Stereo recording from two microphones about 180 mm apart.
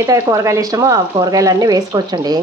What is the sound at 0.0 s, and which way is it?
Speech, 20° right (ahead or behind).